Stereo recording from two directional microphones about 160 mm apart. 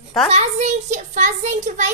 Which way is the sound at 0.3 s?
45° right (ahead or behind).